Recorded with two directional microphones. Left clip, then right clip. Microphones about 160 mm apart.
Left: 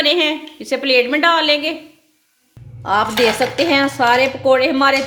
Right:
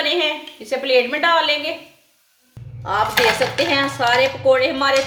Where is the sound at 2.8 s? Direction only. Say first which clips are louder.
Left 2 dB; 65° left (ahead or behind).